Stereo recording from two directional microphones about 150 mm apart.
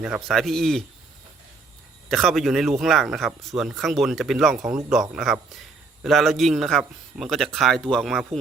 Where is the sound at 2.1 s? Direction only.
Centre (ahead or behind).